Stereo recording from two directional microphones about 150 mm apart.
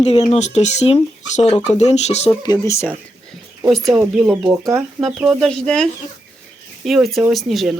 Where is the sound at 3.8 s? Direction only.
5° right (ahead or behind).